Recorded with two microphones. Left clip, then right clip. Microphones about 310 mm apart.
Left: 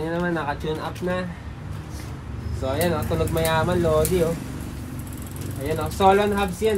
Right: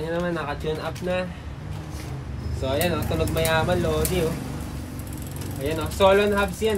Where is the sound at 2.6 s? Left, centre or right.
Centre.